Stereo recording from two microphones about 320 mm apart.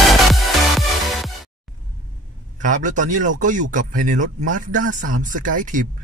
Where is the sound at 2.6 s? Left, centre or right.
Right.